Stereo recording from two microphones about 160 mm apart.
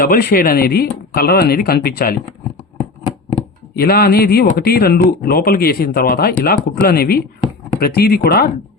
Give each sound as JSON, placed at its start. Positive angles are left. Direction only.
{"t": 0.0, "sound": "speech", "side_deg": 70}
{"t": 3.8, "sound": "speech", "side_deg": 75}